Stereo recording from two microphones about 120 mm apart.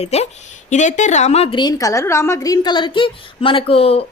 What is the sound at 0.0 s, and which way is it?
A woman's voice, 60° left (ahead or behind).